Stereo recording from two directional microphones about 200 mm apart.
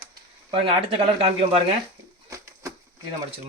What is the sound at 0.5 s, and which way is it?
Speech, 25° right (ahead or behind).